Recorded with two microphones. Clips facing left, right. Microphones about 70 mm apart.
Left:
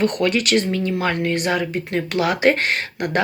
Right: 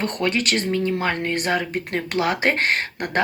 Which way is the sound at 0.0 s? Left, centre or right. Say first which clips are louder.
Left 4 dB; right.